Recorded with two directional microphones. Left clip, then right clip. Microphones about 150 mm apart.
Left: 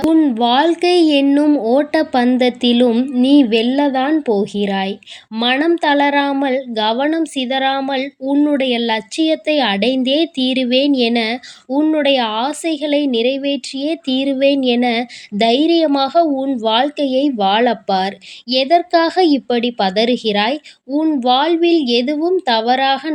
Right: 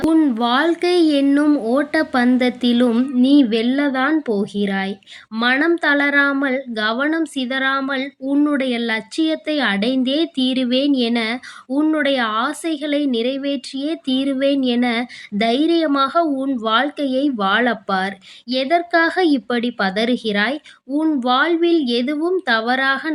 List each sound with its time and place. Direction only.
0.0 s speech: 5° left (ahead or behind)